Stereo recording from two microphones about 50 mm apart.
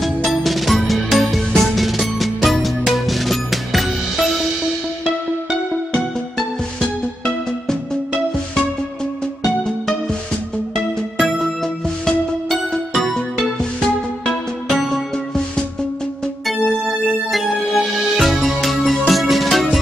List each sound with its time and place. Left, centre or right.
0.0 s music: centre
5.9 s music: centre
9.4 s music: centre